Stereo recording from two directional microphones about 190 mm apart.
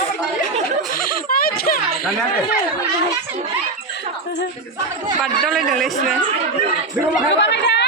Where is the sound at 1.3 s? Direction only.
50° left (ahead or behind).